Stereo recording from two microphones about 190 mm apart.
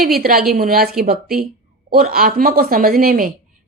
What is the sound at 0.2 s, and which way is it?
A woman's voice, 50° right (ahead or behind).